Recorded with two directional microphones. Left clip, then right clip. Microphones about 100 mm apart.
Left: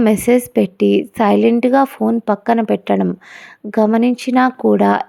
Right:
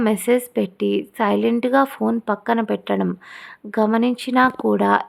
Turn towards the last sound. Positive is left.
turn(degrees=35)  # may be behind; listen again after turning